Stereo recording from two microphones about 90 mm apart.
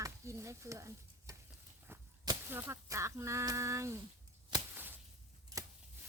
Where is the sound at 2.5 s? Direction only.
25° right (ahead or behind).